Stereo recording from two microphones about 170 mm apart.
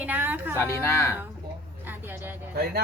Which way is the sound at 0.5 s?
15° left (ahead or behind).